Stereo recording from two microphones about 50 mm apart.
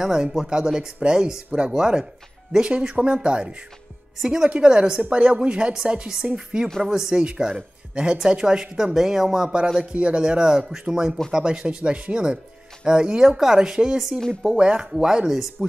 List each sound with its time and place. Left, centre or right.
0.0 s speech: centre
4.2 s speech: centre
13.9 s speech: centre
14.4 s speech: centre